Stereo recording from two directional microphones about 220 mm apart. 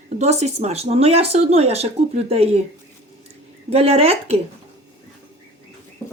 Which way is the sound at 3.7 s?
25° right (ahead or behind).